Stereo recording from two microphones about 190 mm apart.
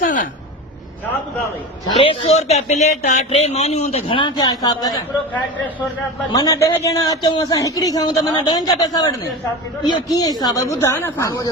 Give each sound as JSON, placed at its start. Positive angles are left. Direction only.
{"t": 0.0, "sound": "speech", "side_deg": 45}
{"t": 2.0, "sound": "speech", "side_deg": 30}
{"t": 6.3, "sound": "a man's voice", "side_deg": 20}
{"t": 10.2, "sound": "a woman's voice", "side_deg": 20}